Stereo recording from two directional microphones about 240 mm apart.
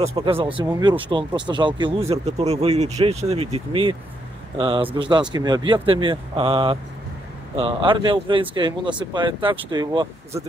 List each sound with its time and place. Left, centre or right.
0.0 s speech: right